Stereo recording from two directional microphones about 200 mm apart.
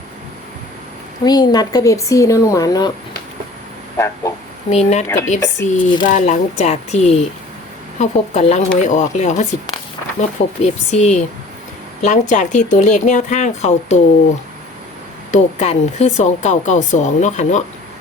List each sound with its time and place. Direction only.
1.2 s speech: 20° left (ahead or behind)
3.9 s a sound: 15° left (ahead or behind)
4.7 s speech: 35° left (ahead or behind)
5.4 s speech: 15° left (ahead or behind)
6.1 s speech: 35° left (ahead or behind)
15.3 s speech: 35° left (ahead or behind)